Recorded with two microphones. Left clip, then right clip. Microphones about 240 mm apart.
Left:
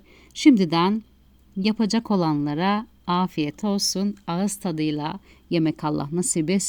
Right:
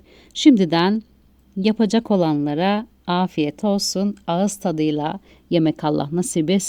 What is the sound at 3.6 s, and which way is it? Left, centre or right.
Speech, left.